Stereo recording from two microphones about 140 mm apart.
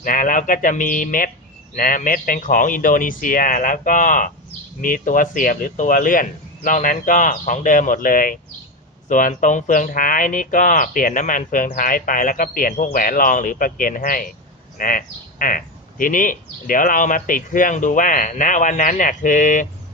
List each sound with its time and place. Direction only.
0.0 s speech: 70° left (ahead or behind)
6.6 s speech: 65° left (ahead or behind)